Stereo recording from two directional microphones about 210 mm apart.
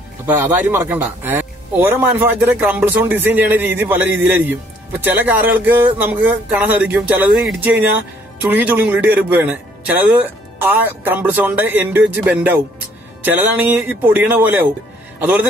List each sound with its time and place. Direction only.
0.3 s a man's voice: 10° right (ahead or behind)